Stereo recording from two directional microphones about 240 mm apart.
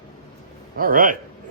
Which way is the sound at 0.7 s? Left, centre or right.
Right.